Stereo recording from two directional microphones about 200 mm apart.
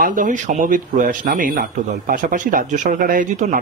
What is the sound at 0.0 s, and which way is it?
Speech, 40° right (ahead or behind).